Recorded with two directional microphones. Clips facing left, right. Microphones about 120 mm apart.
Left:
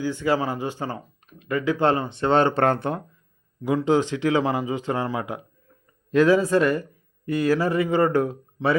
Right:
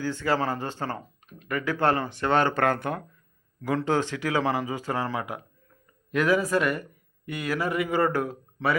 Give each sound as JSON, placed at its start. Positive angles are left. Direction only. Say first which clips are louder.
{"t": 0.0, "sound": "speech", "louder": "left 3 dB", "side_deg": 15}
{"t": 3.6, "sound": "speech", "louder": "left 4 dB", "side_deg": 15}